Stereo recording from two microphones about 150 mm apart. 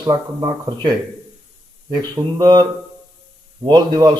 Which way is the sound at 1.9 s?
25° right (ahead or behind).